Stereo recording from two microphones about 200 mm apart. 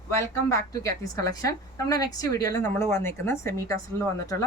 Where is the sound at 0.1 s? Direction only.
15° left (ahead or behind).